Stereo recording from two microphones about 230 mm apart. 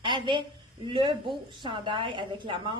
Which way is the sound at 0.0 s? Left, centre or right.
Right.